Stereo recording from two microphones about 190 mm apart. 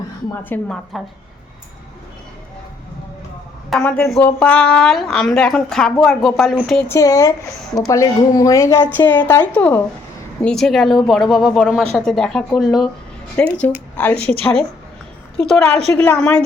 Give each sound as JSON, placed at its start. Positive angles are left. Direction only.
{"t": 0.4, "sound": "a woman's voice", "side_deg": 10}
{"t": 3.7, "sound": "a woman's voice", "side_deg": 5}
{"t": 6.9, "sound": "a woman's voice", "side_deg": 15}
{"t": 15.4, "sound": "a woman's voice", "side_deg": 0}